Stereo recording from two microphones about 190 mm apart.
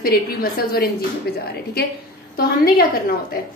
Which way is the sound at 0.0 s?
50° left (ahead or behind).